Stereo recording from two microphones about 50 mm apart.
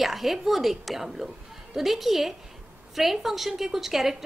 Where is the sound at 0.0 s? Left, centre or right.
Centre.